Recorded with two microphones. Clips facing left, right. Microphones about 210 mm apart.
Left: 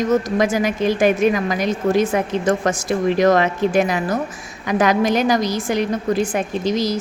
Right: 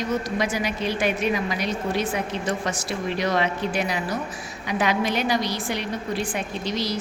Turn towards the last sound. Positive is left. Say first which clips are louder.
# left 7 dB
turn(degrees=45)  # may be behind; listen again after turning